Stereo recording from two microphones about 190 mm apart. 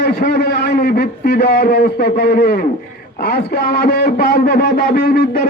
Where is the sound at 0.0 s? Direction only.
60° left (ahead or behind).